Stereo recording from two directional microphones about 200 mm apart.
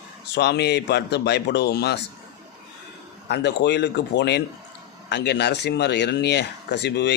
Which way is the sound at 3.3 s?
55° left (ahead or behind).